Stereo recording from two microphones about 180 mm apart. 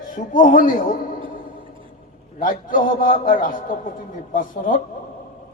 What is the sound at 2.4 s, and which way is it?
A man's voice, 50° left (ahead or behind).